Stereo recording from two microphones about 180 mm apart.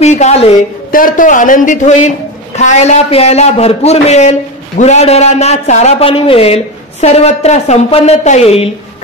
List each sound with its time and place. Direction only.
0.0 s a man's voice: 40° left (ahead or behind)
0.9 s a man's voice: 50° left (ahead or behind)